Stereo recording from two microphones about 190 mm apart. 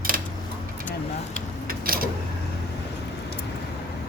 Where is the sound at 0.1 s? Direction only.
50° right (ahead or behind).